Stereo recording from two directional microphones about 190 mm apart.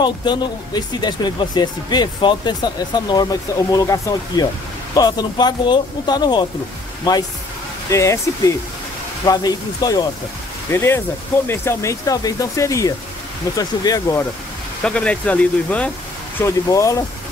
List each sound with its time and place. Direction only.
0.0 s speech: 25° left (ahead or behind)
14.8 s speech: 5° left (ahead or behind)